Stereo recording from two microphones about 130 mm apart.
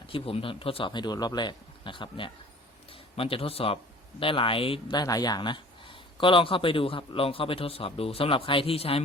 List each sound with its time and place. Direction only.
0.1 s speech: 45° left (ahead or behind)